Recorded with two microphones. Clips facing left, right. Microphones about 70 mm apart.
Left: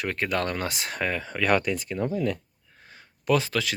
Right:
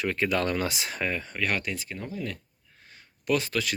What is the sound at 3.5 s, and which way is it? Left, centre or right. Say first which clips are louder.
Speech: left 2 dB; left.